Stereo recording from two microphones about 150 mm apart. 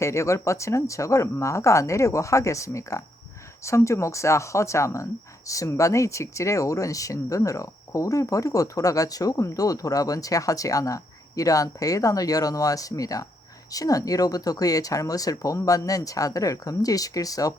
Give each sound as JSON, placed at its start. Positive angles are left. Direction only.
{"t": 0.0, "sound": "speech", "side_deg": 20}